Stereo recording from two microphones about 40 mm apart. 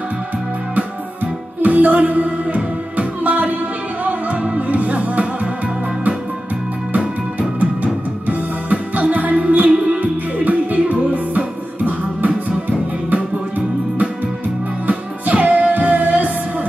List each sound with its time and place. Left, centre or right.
0.7 s music: right
7.3 s music: right
14.9 s music: right